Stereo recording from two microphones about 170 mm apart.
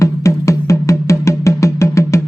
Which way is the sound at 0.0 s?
15° left (ahead or behind).